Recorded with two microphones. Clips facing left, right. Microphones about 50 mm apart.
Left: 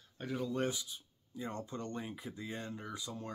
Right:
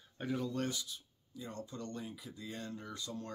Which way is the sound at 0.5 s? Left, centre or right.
Centre.